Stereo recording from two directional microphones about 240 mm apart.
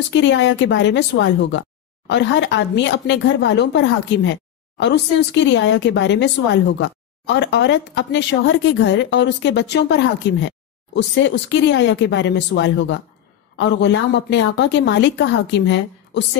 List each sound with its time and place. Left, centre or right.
0.1 s speech: left